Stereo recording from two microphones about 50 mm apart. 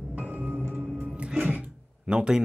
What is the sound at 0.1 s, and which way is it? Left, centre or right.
Music, right.